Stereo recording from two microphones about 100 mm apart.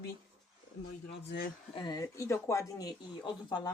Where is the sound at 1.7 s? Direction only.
45° left (ahead or behind).